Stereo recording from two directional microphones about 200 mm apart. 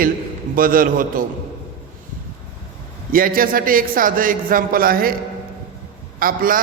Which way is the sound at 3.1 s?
45° right (ahead or behind).